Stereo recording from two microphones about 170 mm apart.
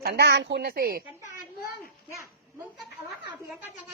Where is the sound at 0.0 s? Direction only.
75° right (ahead or behind).